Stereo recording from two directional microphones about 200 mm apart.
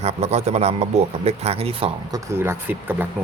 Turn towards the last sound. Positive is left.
turn(degrees=-10)  # may be behind; listen again after turning